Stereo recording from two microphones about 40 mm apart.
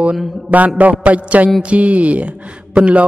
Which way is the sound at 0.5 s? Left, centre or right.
Right.